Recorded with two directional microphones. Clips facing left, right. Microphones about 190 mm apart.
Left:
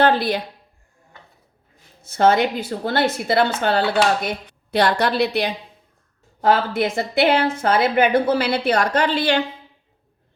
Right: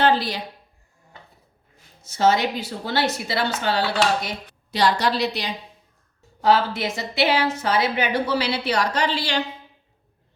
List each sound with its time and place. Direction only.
0.0 s a woman's voice: 55° left (ahead or behind)
2.0 s a woman's voice: 55° left (ahead or behind)